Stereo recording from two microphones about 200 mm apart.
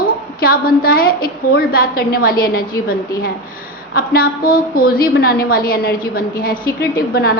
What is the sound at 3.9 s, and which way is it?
A woman's voice, 50° left (ahead or behind).